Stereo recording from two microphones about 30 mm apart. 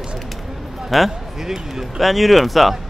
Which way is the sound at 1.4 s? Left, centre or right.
Centre.